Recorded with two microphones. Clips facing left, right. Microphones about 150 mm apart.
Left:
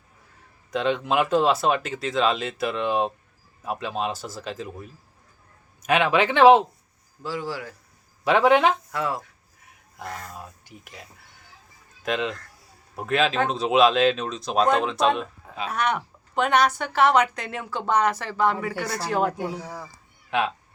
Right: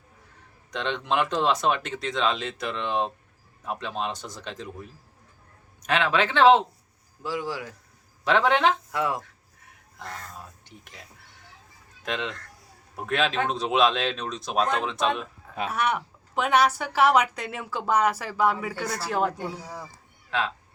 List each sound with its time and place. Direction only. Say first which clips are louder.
0.7 s speech: left 4 dB; 5° left (ahead or behind)
7.2 s a man's voice: even; 15° right (ahead or behind)
8.2 s speech: left 3 dB; 10° left (ahead or behind)
8.9 s a man's voice: even; 15° right (ahead or behind)
10.0 s speech: left 4 dB; 10° left (ahead or behind)
12.0 s speech: left 5 dB; 5° left (ahead or behind)
18.7 s speech: left 2 dB; 10° left (ahead or behind)
18.9 s speech: left 2 dB; centre (ahead or behind)